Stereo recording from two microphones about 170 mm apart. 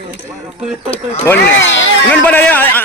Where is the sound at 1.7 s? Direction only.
10° left (ahead or behind).